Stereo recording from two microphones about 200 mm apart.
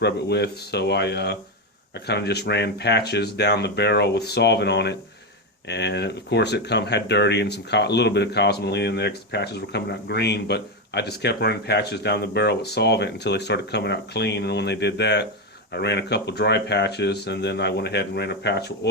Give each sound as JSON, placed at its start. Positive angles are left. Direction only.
{"t": 0.0, "sound": "speech", "side_deg": 55}